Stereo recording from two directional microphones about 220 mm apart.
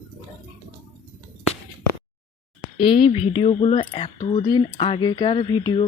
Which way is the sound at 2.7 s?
25° left (ahead or behind).